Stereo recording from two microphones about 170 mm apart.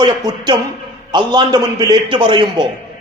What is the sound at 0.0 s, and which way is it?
A man's voice, 25° right (ahead or behind).